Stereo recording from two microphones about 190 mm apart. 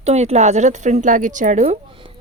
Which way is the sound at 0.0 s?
35° right (ahead or behind).